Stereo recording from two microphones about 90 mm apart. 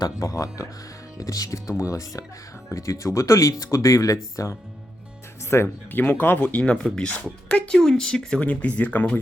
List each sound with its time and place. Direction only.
0.0 s speech: 40° left (ahead or behind)
5.6 s speech: 20° left (ahead or behind)